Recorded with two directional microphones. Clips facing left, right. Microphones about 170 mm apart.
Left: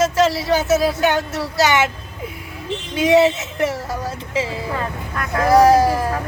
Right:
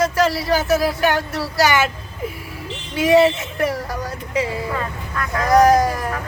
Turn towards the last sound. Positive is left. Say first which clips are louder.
# left 1 dB
turn(degrees=5)  # may be behind; listen again after turning